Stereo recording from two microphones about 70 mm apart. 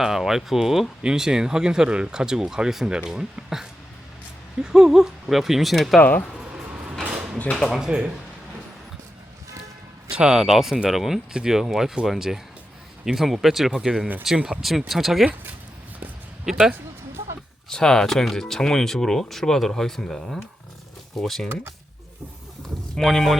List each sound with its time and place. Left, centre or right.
0.0 s speech: centre
6.0 s speech: left
6.4 s vehicle: centre
7.0 s a sound: centre
7.7 s speech: centre
10.2 s speech: centre
16.5 s speech: centre
17.7 s speech: centre
23.0 s speech: centre